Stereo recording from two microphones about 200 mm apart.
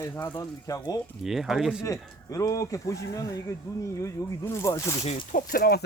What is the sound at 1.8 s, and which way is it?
Speech, 15° left (ahead or behind).